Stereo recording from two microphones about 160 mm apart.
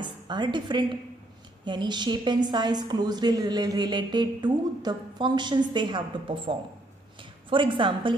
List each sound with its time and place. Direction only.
0.0 s a woman's voice: 30° right (ahead or behind)